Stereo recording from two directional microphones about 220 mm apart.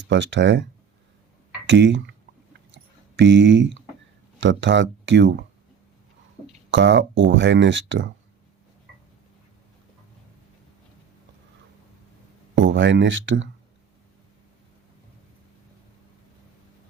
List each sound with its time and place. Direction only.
0.1 s speech: 55° right (ahead or behind)
1.6 s speech: 55° right (ahead or behind)
2.7 s a sound: 55° right (ahead or behind)
4.4 s speech: 55° right (ahead or behind)
6.7 s speech: 55° right (ahead or behind)
12.5 s speech: 55° right (ahead or behind)